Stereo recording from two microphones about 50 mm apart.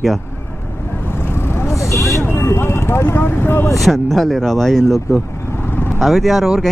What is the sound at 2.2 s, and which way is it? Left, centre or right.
Vehicle, left.